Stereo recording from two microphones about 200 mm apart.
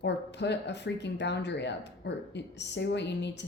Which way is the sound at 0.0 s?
60° left (ahead or behind).